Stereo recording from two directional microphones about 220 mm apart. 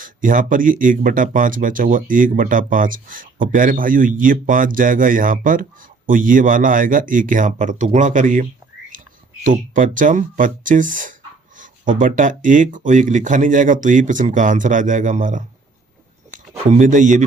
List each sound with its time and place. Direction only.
0.0 s speech: 40° right (ahead or behind)